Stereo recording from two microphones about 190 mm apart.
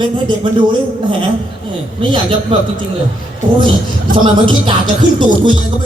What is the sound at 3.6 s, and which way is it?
Music, 25° right (ahead or behind).